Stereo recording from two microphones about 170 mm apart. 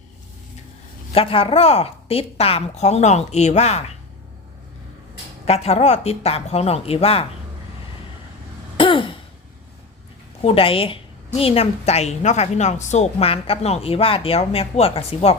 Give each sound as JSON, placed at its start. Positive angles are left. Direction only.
{"t": 1.1, "sound": "a woman's voice", "side_deg": 35}
{"t": 5.5, "sound": "a woman's voice", "side_deg": 35}
{"t": 8.8, "sound": "throat clearing", "side_deg": 30}
{"t": 10.4, "sound": "a woman's voice", "side_deg": 35}